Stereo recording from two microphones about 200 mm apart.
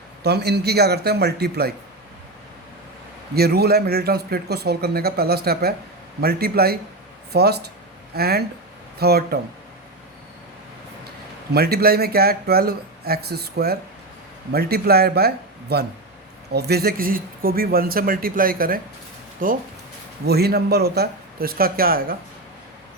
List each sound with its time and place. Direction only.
0.2 s speech: 55° right (ahead or behind)
3.3 s speech: 50° right (ahead or behind)
11.5 s speech: 50° right (ahead or behind)